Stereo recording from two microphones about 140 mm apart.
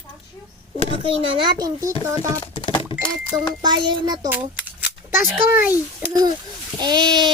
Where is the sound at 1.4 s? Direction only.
30° right (ahead or behind).